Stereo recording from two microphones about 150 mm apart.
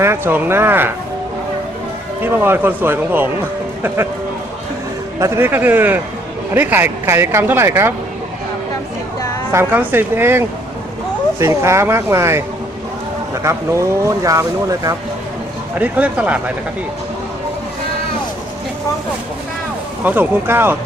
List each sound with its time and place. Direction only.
0.0 s speech: 15° right (ahead or behind)
2.2 s speech: 15° right (ahead or behind)
5.2 s speech: 15° right (ahead or behind)
9.5 s speech: 15° right (ahead or behind)
15.8 s speech: 10° right (ahead or behind)
20.1 s speech: 15° right (ahead or behind)